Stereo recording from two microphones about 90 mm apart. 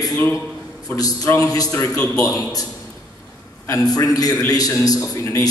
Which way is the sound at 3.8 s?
45° left (ahead or behind).